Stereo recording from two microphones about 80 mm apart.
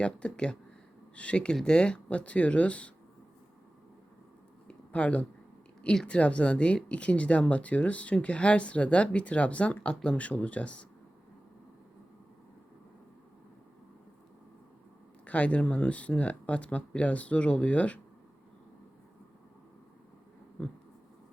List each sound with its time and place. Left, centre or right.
0.0 s speech: centre
4.7 s a sound: centre
5.8 s speech: centre
15.3 s speech: centre